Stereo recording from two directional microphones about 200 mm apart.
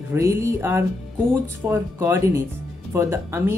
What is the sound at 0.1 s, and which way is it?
Speech, 15° right (ahead or behind).